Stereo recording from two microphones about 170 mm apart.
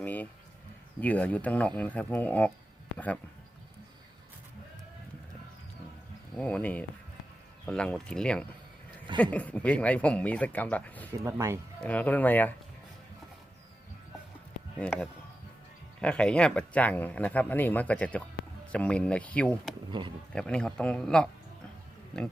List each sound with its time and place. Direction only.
0.0 s speech: 10° left (ahead or behind)
6.3 s a man's voice: 10° left (ahead or behind)
11.1 s speech: 15° right (ahead or behind)
11.8 s speech: 10° left (ahead or behind)
14.8 s speech: 5° left (ahead or behind)
19.9 s speech: 30° right (ahead or behind)
20.3 s a man's voice: 5° left (ahead or behind)